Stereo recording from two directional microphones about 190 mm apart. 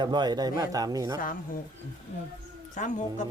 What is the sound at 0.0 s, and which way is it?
Speech, 25° right (ahead or behind).